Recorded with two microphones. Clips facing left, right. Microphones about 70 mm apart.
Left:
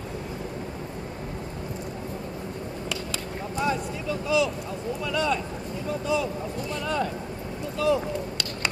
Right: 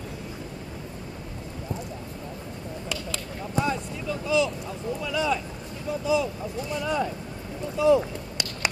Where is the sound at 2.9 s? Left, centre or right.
Centre.